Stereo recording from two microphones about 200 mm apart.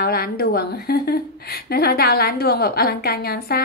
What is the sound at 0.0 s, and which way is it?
A woman's voice, 50° left (ahead or behind).